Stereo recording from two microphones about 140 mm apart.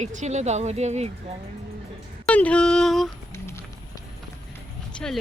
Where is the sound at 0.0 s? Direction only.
60° right (ahead or behind).